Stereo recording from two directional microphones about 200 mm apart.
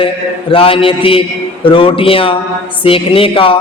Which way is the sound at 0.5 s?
25° left (ahead or behind).